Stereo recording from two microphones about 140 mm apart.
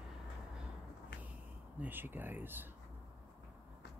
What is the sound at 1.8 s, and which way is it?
Speech, 15° right (ahead or behind).